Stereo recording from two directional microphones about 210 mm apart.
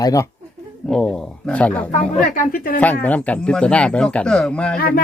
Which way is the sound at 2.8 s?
10° left (ahead or behind).